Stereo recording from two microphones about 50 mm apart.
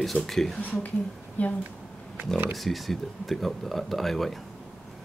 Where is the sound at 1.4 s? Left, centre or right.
Left.